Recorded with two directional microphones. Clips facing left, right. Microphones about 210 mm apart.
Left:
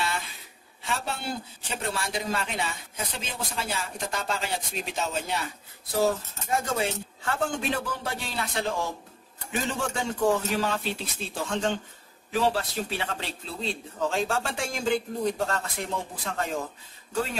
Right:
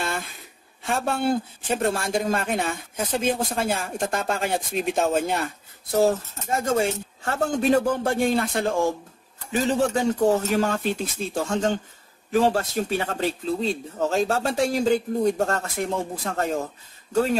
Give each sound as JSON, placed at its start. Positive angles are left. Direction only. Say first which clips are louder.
{"t": 0.0, "sound": "a sound", "louder": "right 2 dB", "side_deg": -50}
{"t": 0.8, "sound": "speech", "louder": "right 9 dB", "side_deg": -50}
{"t": 9.7, "sound": "speech", "louder": "right 11 dB", "side_deg": -40}